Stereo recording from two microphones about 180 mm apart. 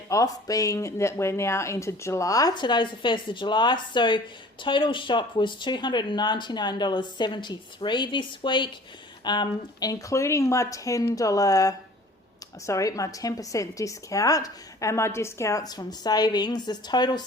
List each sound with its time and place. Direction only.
0.1 s a woman's voice: 20° left (ahead or behind)